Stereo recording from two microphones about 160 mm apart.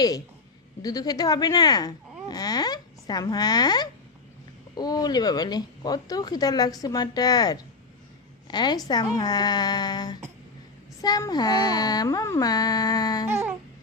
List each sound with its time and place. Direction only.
0.8 s speech: 25° left (ahead or behind)
13.3 s music: 15° right (ahead or behind)